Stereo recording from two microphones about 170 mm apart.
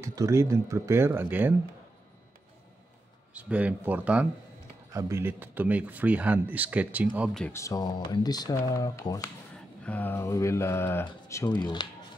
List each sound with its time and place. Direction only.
0.0 s speech: 20° right (ahead or behind)
3.3 s speech: 10° right (ahead or behind)
7.5 s speech: 20° left (ahead or behind)